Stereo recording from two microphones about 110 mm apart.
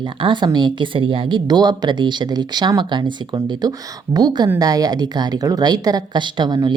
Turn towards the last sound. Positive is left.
turn(degrees=-40)  # may be behind; listen again after turning